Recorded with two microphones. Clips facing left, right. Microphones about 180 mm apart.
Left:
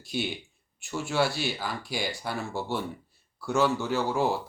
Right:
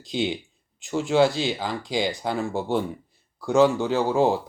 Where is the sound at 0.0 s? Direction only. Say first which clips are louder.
Right 6 dB; 20° right (ahead or behind).